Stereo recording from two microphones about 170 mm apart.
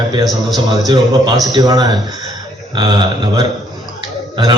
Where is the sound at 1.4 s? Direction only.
25° right (ahead or behind).